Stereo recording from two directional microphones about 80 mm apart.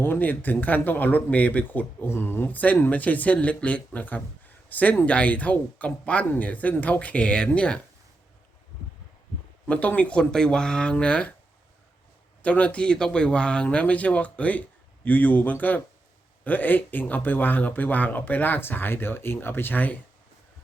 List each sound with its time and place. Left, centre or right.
0.0 s speech: left
9.6 s speech: centre
12.4 s speech: centre